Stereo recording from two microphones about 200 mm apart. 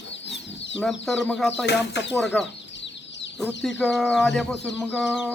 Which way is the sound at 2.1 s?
5° left (ahead or behind).